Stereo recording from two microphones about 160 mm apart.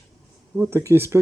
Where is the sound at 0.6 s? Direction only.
15° right (ahead or behind).